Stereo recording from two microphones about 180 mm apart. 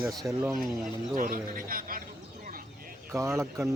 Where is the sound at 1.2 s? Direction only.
50° right (ahead or behind).